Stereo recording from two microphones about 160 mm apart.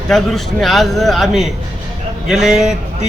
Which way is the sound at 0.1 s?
Centre (ahead or behind).